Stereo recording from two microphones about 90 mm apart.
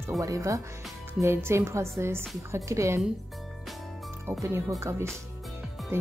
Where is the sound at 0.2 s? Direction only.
40° right (ahead or behind).